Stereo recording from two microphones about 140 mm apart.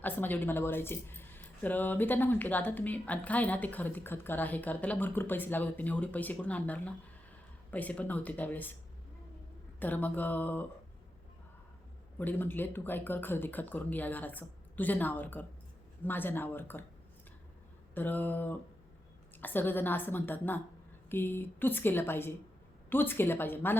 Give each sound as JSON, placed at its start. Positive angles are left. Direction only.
{"t": 0.0, "sound": "speech", "side_deg": 15}
{"t": 9.8, "sound": "speech", "side_deg": 10}
{"t": 12.2, "sound": "speech", "side_deg": 15}
{"t": 17.9, "sound": "speech", "side_deg": 15}